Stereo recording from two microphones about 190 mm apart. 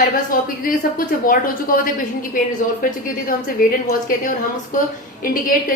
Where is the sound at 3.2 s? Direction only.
45° left (ahead or behind).